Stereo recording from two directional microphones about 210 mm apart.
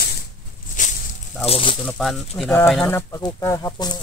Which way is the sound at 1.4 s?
25° left (ahead or behind).